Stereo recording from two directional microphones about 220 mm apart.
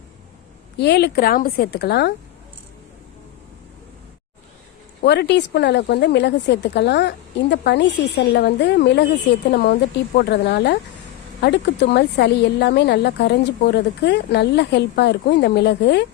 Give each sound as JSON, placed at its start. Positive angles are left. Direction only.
{"t": 0.8, "sound": "speech", "side_deg": 50}
{"t": 5.0, "sound": "speech", "side_deg": 50}